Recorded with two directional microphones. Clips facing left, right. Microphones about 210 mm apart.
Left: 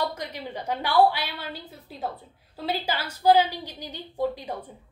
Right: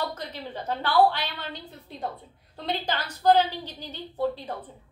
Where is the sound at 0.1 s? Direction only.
15° left (ahead or behind).